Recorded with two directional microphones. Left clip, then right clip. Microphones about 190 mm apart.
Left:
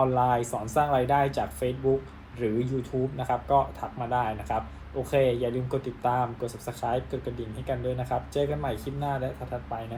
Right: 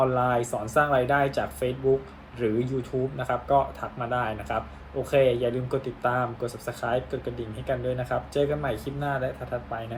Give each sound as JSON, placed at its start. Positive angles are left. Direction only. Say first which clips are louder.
{"t": 0.0, "sound": "speech", "louder": "even", "side_deg": -5}